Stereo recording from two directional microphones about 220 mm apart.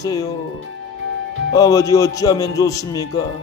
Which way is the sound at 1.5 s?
15° left (ahead or behind).